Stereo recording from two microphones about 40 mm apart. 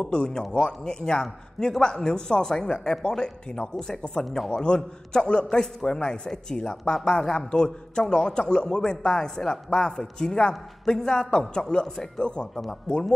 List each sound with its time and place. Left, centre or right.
0.0 s a man's voice: left
4.2 s speech: centre
4.5 s a man's voice: centre